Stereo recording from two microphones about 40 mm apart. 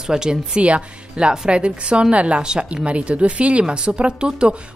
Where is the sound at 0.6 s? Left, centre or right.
Right.